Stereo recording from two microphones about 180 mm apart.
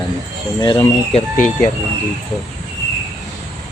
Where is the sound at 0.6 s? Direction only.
25° left (ahead or behind).